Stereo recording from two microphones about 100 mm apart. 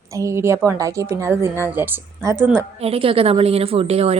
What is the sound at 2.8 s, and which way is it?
A woman's voice, 70° right (ahead or behind).